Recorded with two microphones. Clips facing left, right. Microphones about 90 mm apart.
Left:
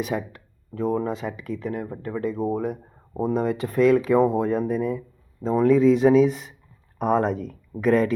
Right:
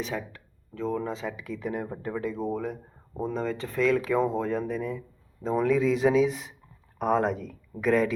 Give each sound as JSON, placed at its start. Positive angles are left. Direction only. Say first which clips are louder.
{"t": 0.3, "sound": "a sound", "louder": "left 6 dB", "side_deg": 15}
{"t": 1.4, "sound": "speech", "louder": "left 3 dB", "side_deg": -5}
{"t": 2.1, "sound": "speech", "louder": "left 6 dB", "side_deg": 0}